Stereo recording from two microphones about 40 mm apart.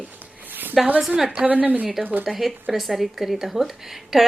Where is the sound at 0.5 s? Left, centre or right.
Right.